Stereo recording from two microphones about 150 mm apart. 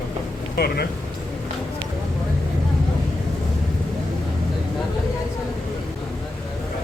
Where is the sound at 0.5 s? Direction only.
90° left.